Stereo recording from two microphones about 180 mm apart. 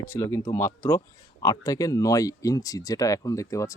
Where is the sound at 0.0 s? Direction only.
15° left (ahead or behind).